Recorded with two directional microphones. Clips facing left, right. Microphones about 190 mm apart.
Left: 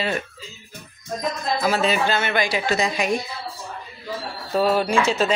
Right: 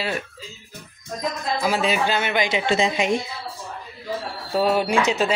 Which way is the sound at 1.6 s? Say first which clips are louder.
Left 1 dB; 10° right (ahead or behind).